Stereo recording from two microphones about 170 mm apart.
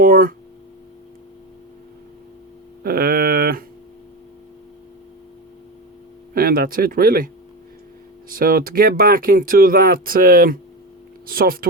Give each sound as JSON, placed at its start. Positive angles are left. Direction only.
{"t": 0.0, "sound": "speech", "side_deg": -55}
{"t": 2.8, "sound": "a sound", "side_deg": -60}
{"t": 6.3, "sound": "speech", "side_deg": -60}
{"t": 8.3, "sound": "speech", "side_deg": -60}